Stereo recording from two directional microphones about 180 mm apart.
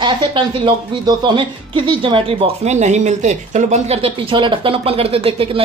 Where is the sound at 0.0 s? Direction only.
25° right (ahead or behind).